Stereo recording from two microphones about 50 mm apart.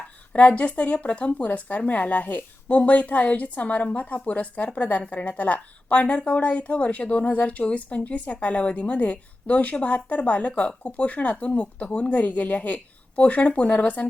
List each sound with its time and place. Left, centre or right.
0.3 s speech: left